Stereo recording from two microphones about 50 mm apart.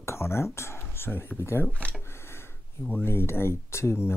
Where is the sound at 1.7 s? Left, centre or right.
Left.